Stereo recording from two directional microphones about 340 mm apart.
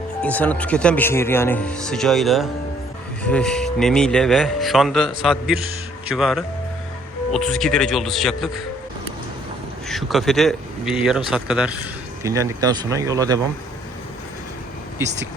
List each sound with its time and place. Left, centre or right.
0.2 s speech: centre
9.9 s a man's voice: centre